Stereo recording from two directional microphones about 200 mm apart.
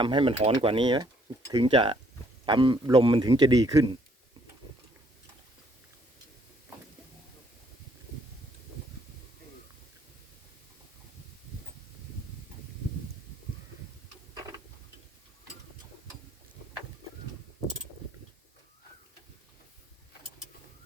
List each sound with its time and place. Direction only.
0.0 s a man's voice: 25° right (ahead or behind)